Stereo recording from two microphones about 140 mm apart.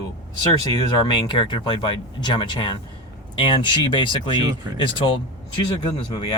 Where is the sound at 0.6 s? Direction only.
35° left (ahead or behind).